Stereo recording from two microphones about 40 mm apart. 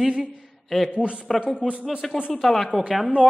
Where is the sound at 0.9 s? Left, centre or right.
Right.